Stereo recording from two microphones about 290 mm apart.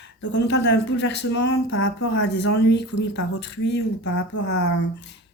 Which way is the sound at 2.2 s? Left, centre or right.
Left.